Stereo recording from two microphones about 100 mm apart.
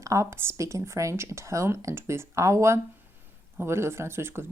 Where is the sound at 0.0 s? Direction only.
30° right (ahead or behind).